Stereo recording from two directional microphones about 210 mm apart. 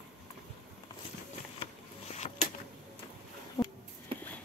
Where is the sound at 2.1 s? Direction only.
30° left (ahead or behind).